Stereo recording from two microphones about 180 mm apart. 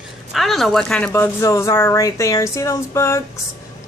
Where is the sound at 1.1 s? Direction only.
15° left (ahead or behind).